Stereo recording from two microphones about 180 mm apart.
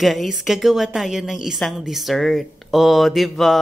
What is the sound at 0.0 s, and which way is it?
A woman's voice, centre (ahead or behind).